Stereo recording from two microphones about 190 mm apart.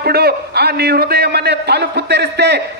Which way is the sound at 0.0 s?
55° right (ahead or behind).